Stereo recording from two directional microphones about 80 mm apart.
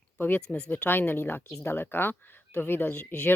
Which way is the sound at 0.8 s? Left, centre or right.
Left.